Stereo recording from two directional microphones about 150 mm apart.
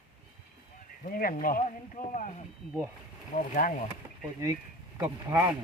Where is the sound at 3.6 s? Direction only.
65° left (ahead or behind).